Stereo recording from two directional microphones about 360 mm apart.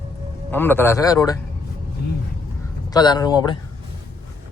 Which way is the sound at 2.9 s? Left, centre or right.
Centre.